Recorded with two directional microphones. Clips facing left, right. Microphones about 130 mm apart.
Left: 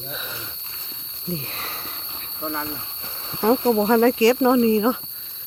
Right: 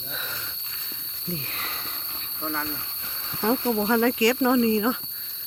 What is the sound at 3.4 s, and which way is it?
Speech, 40° left (ahead or behind).